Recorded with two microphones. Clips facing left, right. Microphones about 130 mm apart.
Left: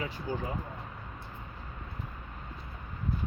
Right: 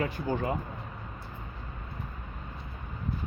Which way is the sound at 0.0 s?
60° right (ahead or behind).